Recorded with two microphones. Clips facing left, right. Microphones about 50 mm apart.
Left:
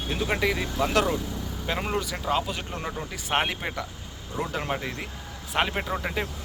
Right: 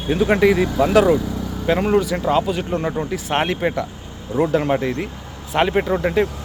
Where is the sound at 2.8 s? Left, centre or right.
Right.